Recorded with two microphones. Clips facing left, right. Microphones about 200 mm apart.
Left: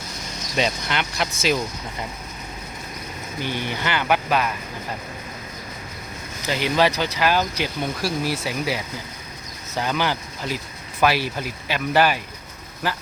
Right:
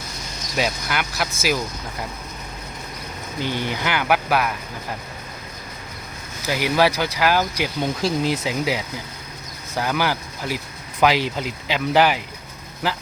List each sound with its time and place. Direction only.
0.5 s speech: 5° right (ahead or behind)
3.5 s speech: 15° right (ahead or behind)
6.4 s speech: 10° right (ahead or behind)